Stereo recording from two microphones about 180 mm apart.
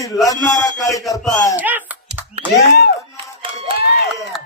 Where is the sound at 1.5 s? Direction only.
10° right (ahead or behind).